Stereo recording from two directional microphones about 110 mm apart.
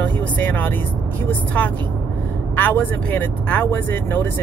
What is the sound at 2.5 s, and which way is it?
Speech, 15° left (ahead or behind).